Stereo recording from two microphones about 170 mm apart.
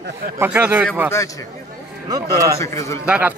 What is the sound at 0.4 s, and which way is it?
Speech, 10° right (ahead or behind).